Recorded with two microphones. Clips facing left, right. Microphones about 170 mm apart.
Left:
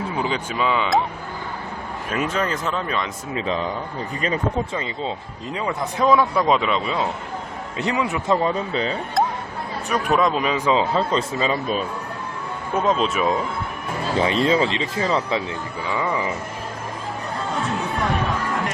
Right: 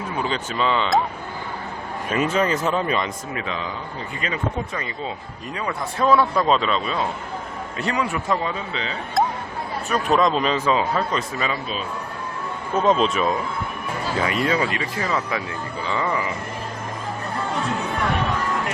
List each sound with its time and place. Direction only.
0.2 s speech: 15° left (ahead or behind)
2.0 s speech: centre (ahead or behind)
3.3 s speech: 35° left (ahead or behind)
5.5 s speech: 20° left (ahead or behind)
8.4 s speech: 40° left (ahead or behind)
9.9 s speech: 10° left (ahead or behind); by 11.5 s 25° left (ahead or behind)
12.7 s speech: 5° left (ahead or behind)
14.2 s speech: 30° left (ahead or behind)
15.9 s speech: 15° left (ahead or behind)